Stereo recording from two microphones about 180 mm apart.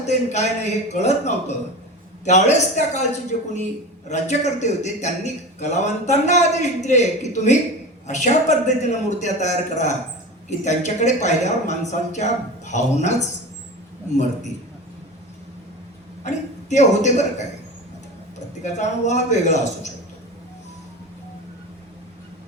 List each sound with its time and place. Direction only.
0.0 s a man's voice: 40° left (ahead or behind)
16.2 s a man's voice: 40° left (ahead or behind)
18.6 s a man's voice: 40° left (ahead or behind)